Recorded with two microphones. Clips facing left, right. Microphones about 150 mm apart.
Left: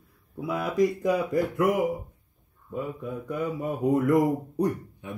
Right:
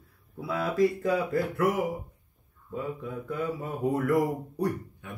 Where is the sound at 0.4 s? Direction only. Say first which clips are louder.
Left 1 dB; 15° left (ahead or behind).